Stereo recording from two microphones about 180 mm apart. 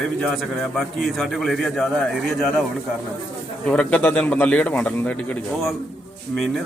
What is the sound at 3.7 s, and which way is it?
Speech, 5° left (ahead or behind).